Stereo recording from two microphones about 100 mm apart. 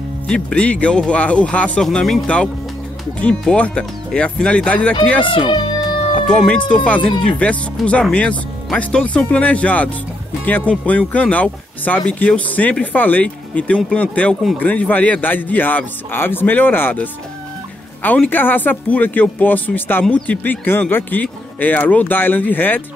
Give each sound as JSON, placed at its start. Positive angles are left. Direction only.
{"t": 0.3, "sound": "speech", "side_deg": 10}
{"t": 5.2, "sound": "speech", "side_deg": 55}
{"t": 6.2, "sound": "speech", "side_deg": 10}